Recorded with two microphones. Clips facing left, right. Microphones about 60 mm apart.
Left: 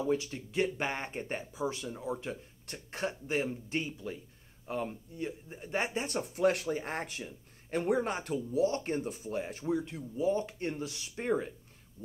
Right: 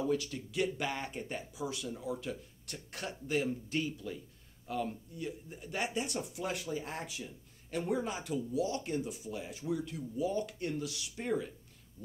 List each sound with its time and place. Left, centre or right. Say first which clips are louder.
0.1 s speech: left 2 dB; left
9.8 s speech: left 4 dB; left